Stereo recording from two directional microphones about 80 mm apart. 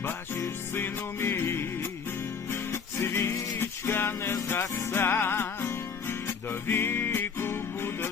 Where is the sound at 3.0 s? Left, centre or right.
Left.